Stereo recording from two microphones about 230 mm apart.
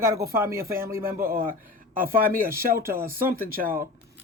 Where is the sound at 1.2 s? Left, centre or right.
Right.